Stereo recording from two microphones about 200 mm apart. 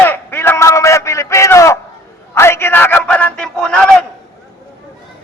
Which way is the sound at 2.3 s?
10° left (ahead or behind).